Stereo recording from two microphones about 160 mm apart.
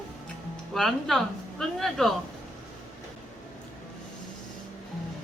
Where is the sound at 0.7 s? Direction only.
5° left (ahead or behind).